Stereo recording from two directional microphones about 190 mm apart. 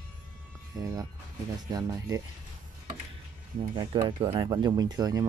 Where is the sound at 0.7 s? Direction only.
20° right (ahead or behind).